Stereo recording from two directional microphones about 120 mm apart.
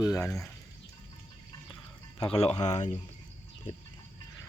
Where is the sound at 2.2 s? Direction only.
50° left (ahead or behind).